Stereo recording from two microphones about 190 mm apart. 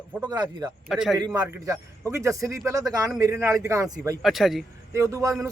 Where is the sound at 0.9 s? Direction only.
Centre (ahead or behind).